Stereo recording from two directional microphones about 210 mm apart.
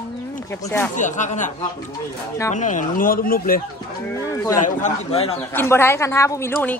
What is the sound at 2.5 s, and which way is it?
Speech, 35° left (ahead or behind).